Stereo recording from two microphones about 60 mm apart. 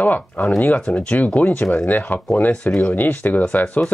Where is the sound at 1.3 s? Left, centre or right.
Left.